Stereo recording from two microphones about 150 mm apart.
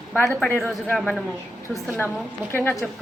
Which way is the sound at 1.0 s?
Centre (ahead or behind).